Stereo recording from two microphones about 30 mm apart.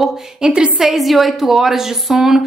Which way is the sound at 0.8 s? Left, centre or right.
Centre.